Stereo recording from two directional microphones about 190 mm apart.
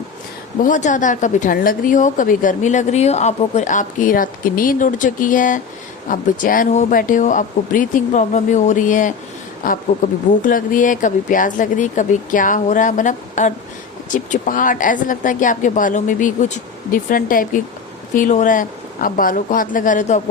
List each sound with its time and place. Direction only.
0.6 s a woman's voice: 40° left (ahead or behind)